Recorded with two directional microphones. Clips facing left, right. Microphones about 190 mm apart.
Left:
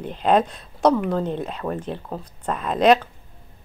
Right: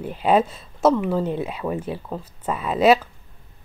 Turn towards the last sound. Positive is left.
turn(degrees=-5)  # may be behind; listen again after turning